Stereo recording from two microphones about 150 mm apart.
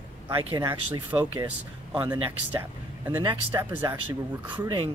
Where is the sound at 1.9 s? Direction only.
25° right (ahead or behind).